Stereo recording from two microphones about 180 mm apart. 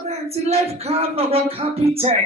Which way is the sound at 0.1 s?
35° right (ahead or behind).